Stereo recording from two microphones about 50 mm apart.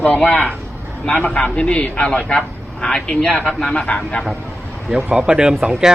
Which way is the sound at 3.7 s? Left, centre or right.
Centre.